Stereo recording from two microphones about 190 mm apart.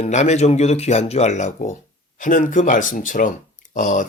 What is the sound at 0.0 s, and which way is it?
Speech, 40° left (ahead or behind).